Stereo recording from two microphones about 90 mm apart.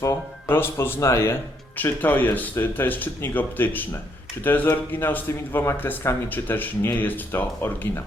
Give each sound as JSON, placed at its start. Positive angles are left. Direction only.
{"t": 0.0, "sound": "speech", "side_deg": 30}
{"t": 1.8, "sound": "speech", "side_deg": 20}